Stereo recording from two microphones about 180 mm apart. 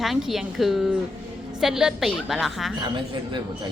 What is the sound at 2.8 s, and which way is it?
Speech, 25° right (ahead or behind).